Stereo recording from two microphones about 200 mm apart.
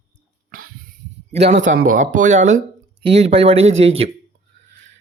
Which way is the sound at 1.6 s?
45° right (ahead or behind).